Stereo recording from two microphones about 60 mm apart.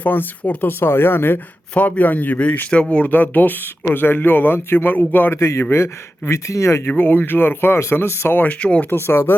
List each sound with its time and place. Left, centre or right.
0.0 s a man's voice: left
1.7 s a man's voice: left
5.4 s speech: left
6.9 s a man's voice: left
8.4 s a man's voice: left
8.9 s a man's voice: left